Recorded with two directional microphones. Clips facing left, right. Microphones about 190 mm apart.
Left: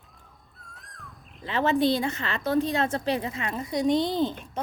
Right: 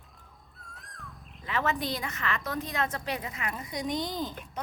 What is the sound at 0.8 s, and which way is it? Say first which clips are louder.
Bird: even; centre (ahead or behind).